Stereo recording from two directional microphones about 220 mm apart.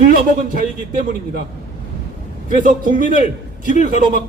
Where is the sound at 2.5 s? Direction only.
40° right (ahead or behind).